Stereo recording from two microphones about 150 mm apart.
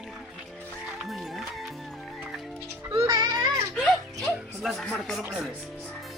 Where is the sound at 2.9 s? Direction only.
20° right (ahead or behind).